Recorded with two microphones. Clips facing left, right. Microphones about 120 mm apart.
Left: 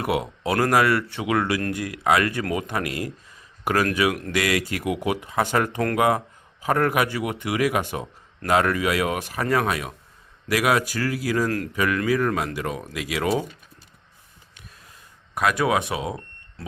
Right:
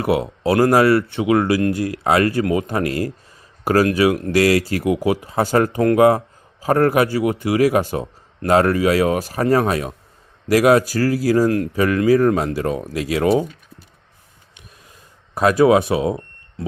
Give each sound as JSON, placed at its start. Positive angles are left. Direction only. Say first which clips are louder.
{"t": 0.0, "sound": "a man's voice", "louder": "right 6 dB", "side_deg": -30}
{"t": 11.4, "sound": "speech", "louder": "right 8 dB", "side_deg": -25}
{"t": 11.7, "sound": "a man's voice", "louder": "right 7 dB", "side_deg": -35}
{"t": 15.4, "sound": "speech", "louder": "right 8 dB", "side_deg": -30}